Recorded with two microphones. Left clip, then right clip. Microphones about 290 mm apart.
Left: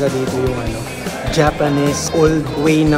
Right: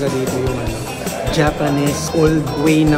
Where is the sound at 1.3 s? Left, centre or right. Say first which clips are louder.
Left 2 dB; centre.